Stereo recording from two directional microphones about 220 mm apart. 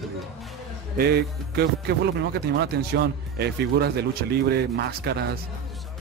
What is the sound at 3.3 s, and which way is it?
Speech, 45° right (ahead or behind).